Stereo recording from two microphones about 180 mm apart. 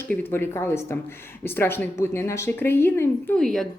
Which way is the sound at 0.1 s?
10° left (ahead or behind).